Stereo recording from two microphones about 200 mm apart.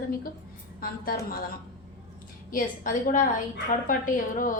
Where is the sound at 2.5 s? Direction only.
40° left (ahead or behind).